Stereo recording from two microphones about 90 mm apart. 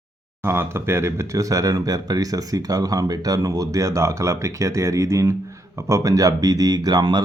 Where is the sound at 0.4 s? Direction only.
25° right (ahead or behind).